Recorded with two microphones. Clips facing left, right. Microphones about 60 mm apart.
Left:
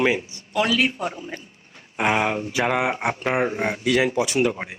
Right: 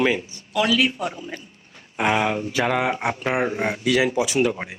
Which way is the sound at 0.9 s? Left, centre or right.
Left.